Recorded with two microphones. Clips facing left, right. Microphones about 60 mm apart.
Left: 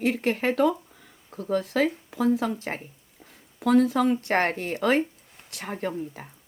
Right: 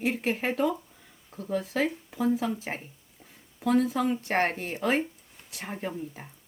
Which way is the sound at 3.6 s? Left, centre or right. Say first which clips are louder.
Left 4 dB; left.